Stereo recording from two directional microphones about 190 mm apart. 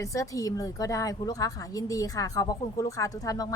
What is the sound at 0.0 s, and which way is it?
A woman's voice, 15° left (ahead or behind).